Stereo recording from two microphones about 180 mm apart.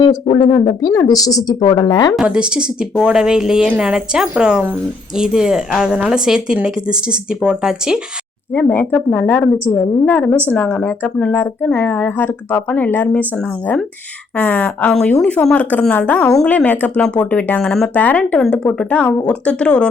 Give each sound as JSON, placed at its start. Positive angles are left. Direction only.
{"t": 0.0, "sound": "a woman's voice", "side_deg": 35}
{"t": 2.1, "sound": "speech", "side_deg": -5}
{"t": 8.5, "sound": "a woman's voice", "side_deg": 10}